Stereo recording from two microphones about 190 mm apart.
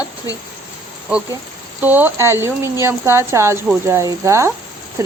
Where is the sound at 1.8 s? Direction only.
10° right (ahead or behind).